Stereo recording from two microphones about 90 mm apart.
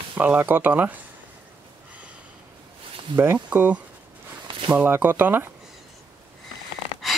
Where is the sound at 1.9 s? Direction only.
15° right (ahead or behind).